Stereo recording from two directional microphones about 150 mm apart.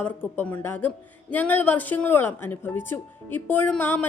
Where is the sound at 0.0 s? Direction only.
10° left (ahead or behind).